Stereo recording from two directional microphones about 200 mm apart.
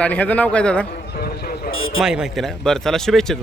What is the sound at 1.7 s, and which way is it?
Speech, 85° left.